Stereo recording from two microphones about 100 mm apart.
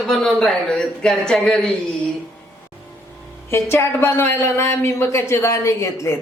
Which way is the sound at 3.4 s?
25° left (ahead or behind).